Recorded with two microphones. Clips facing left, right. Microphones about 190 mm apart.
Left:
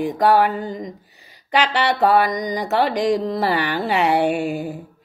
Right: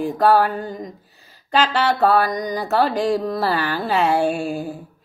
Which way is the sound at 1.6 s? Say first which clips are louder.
Right 1 dB; 70° left (ahead or behind).